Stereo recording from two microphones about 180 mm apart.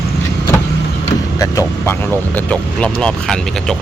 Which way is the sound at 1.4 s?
15° left (ahead or behind).